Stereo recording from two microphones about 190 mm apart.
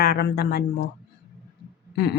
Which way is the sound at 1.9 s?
60° left (ahead or behind).